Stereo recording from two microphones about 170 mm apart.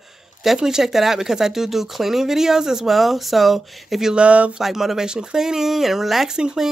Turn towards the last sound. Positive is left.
turn(degrees=-5)  # may be behind; listen again after turning